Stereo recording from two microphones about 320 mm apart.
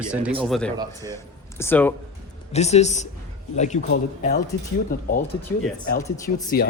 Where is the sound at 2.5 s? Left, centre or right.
Left.